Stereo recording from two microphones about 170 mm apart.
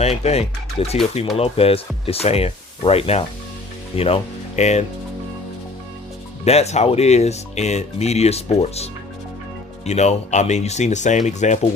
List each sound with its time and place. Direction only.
0.0 s speech: 40° left (ahead or behind)
6.4 s speech: 40° left (ahead or behind)